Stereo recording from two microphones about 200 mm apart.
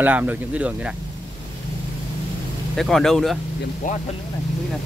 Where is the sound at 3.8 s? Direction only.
40° left (ahead or behind).